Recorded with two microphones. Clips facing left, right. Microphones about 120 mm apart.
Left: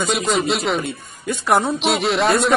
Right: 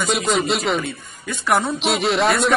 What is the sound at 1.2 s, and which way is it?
Speech, 30° left (ahead or behind).